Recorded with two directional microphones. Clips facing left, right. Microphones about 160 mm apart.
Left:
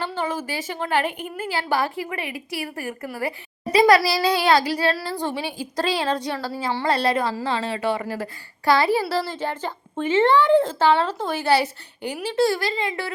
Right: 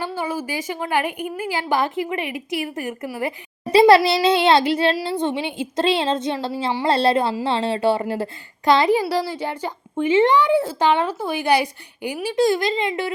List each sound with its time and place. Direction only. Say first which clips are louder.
0.0 s a woman's voice: right 1 dB; 10° right (ahead or behind)
3.7 s a woman's voice: right 4 dB; 30° right (ahead or behind)